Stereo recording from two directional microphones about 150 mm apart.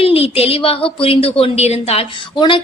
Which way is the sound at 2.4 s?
35° left (ahead or behind).